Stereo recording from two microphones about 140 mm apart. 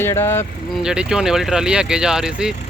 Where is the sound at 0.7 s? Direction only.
5° right (ahead or behind).